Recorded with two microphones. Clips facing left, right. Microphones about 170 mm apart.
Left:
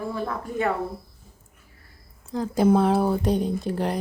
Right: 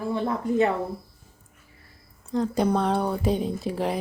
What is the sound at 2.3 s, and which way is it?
Speech, centre (ahead or behind).